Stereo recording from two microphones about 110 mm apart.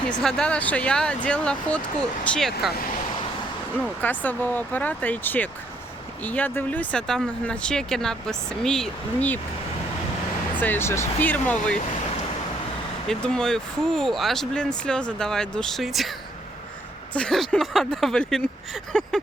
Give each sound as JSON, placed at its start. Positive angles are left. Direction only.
{"t": 0.2, "sound": "speech", "side_deg": 5}
{"t": 3.8, "sound": "speech", "side_deg": 15}
{"t": 10.6, "sound": "speech", "side_deg": 20}
{"t": 13.1, "sound": "speech", "side_deg": 5}
{"t": 17.2, "sound": "speech", "side_deg": 5}